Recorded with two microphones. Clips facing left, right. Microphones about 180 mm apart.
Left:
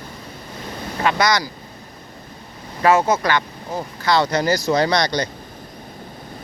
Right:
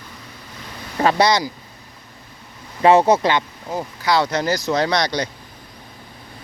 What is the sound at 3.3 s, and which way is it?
Speech, 15° right (ahead or behind).